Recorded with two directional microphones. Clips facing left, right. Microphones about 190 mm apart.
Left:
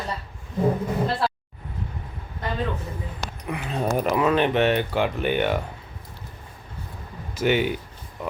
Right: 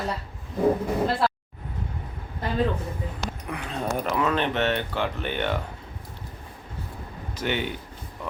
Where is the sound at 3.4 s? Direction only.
5° left (ahead or behind).